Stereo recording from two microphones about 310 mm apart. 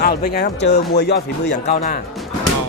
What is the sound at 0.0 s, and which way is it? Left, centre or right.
Speech, left.